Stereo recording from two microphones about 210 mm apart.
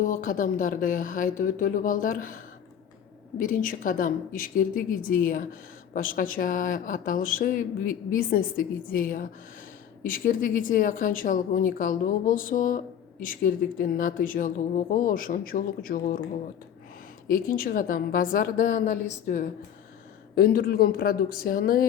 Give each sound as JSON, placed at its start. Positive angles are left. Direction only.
{"t": 0.0, "sound": "speech", "side_deg": 40}
{"t": 17.2, "sound": "speech", "side_deg": 40}